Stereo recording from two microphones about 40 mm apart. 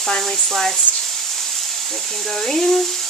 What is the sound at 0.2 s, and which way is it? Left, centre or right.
Speech, centre.